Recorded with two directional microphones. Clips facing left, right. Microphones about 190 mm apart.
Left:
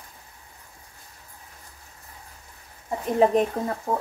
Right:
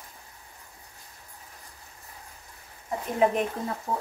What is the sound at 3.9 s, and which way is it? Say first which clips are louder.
Speech: left 4 dB; 50° left (ahead or behind).